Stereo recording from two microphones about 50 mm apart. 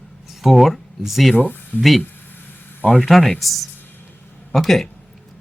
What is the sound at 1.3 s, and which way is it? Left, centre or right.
Speech, left.